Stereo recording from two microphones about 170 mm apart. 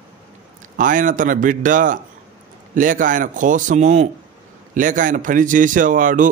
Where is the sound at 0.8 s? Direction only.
50° right (ahead or behind).